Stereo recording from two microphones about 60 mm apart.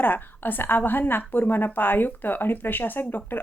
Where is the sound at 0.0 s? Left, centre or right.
Left.